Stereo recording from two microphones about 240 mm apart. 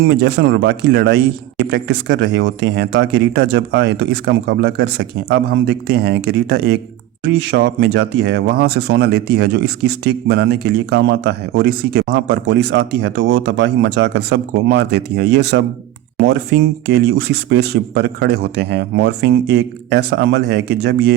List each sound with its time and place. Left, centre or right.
0.1 s a man's voice: right